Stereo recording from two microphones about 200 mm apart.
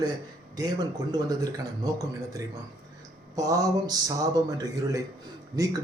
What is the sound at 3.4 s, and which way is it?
A man's voice, 15° right (ahead or behind).